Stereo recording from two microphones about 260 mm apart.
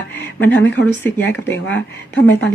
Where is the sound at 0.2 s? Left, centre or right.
Centre.